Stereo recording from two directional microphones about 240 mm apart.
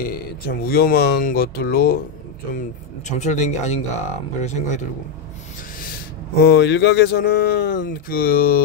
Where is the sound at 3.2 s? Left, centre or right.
Left.